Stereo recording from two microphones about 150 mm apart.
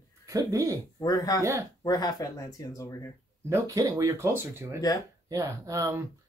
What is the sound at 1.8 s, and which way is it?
Speech, 25° left (ahead or behind).